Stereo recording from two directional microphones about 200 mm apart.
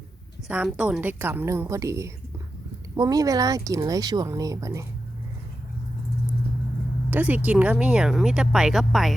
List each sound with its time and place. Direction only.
0.4 s speech: 5° right (ahead or behind)
7.1 s speech: 10° right (ahead or behind)